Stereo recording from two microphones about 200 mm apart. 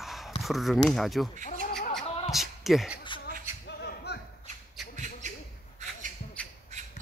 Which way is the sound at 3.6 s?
55° left (ahead or behind).